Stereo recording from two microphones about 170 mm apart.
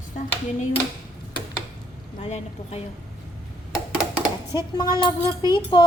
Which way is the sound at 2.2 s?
40° left (ahead or behind).